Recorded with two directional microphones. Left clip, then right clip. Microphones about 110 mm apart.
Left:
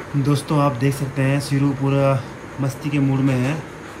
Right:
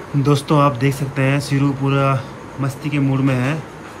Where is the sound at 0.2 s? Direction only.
5° left (ahead or behind).